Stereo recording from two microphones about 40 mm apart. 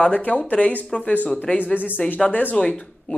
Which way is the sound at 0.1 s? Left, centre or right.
Left.